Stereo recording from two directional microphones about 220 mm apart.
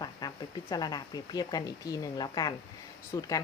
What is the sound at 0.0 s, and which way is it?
Speech, 15° left (ahead or behind).